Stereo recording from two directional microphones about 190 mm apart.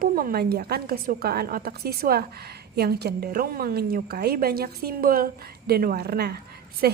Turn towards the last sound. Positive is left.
turn(degrees=-50)  # may be behind; listen again after turning